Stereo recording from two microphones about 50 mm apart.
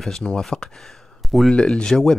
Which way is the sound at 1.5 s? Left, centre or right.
Centre.